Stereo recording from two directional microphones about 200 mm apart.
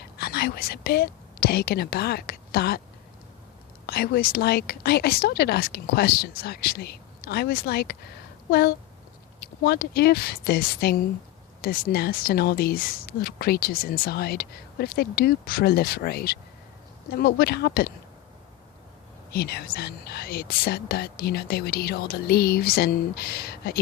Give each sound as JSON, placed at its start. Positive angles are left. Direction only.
{"t": 0.0, "sound": "speech", "side_deg": 50}
{"t": 3.8, "sound": "a woman's voice", "side_deg": 50}
{"t": 19.3, "sound": "a woman's voice", "side_deg": 50}